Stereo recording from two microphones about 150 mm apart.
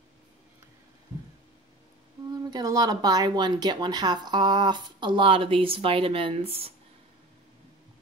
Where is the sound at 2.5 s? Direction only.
25° right (ahead or behind); by 6.7 s 40° right (ahead or behind).